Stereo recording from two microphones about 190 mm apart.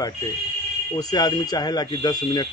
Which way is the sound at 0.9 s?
20° left (ahead or behind).